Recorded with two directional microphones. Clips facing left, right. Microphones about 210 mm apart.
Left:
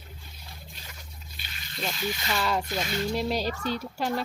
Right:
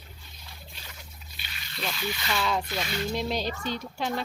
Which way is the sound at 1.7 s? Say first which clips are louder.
Left 1 dB; 45° left (ahead or behind).